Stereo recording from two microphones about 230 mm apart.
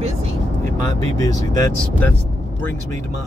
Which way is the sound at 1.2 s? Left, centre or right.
Centre.